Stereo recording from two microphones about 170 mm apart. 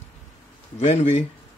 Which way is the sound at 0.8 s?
40° left (ahead or behind).